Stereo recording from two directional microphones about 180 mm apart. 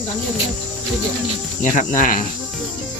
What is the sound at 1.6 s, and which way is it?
Speech, 45° left (ahead or behind).